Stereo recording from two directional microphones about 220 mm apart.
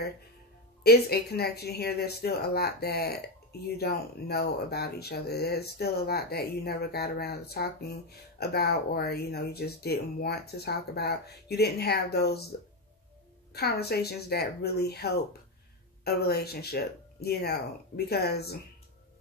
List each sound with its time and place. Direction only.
0.8 s speech: 45° left (ahead or behind)
13.5 s speech: 45° left (ahead or behind)